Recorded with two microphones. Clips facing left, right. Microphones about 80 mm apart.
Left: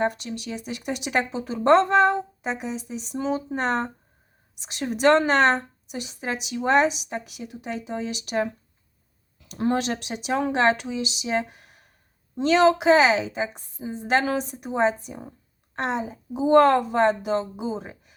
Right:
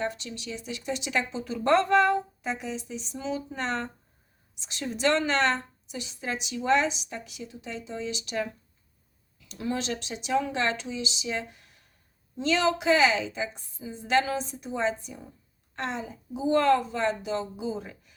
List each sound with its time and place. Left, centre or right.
0.0 s a woman's voice: left
2.5 s a woman's voice: left